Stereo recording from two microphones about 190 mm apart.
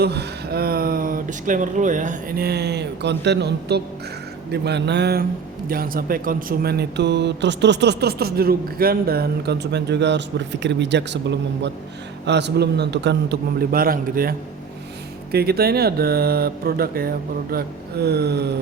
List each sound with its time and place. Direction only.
0.0 s speech: 60° right (ahead or behind)
5.6 s speech: 50° right (ahead or behind)